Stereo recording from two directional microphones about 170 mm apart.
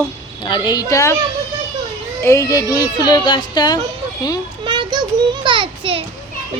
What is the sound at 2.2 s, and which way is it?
Speech, 15° left (ahead or behind).